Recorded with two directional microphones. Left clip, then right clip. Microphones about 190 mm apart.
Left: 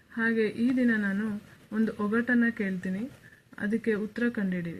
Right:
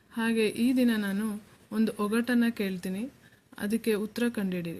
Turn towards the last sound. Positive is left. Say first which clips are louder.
# even
turn(degrees=-45)  # may be behind; listen again after turning